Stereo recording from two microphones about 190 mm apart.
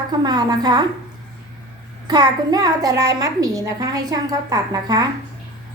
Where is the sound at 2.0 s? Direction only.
20° right (ahead or behind).